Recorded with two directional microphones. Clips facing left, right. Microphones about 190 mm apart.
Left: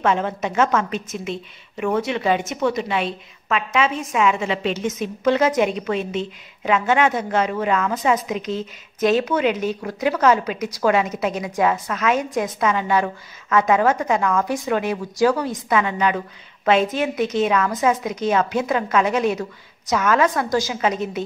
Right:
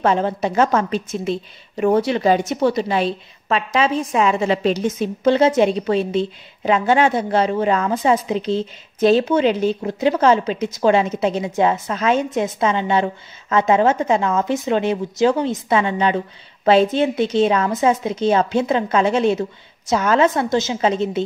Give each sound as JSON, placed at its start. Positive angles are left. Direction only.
{"t": 0.0, "sound": "a woman's voice", "side_deg": -35}